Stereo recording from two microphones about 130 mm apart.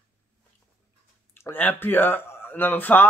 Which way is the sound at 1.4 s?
15° left (ahead or behind).